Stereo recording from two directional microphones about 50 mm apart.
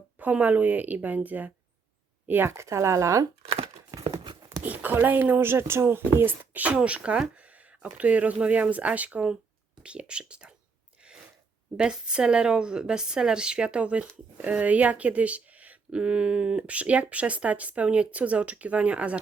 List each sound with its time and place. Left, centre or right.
0.2 s a woman's voice: right
2.2 s speech: right
2.6 s speech: right
4.6 s speech: right
5.4 s speech: right
11.8 s a woman's voice: centre
16.0 s speech: centre